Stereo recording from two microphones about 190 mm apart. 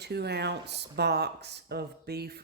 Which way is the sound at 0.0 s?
60° right (ahead or behind).